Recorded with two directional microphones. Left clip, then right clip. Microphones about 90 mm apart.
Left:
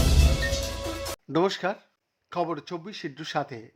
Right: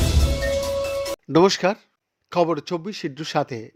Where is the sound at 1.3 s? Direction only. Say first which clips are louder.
Right 8 dB; 65° right (ahead or behind).